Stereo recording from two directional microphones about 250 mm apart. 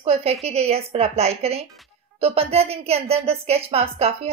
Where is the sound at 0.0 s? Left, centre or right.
Right.